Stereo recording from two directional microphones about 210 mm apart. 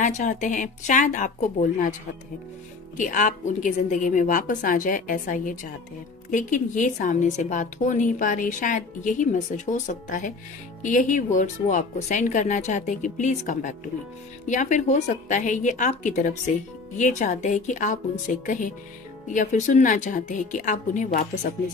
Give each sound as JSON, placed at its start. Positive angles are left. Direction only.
{"t": 0.0, "sound": "a woman's voice", "side_deg": 35}
{"t": 3.0, "sound": "a woman's voice", "side_deg": 35}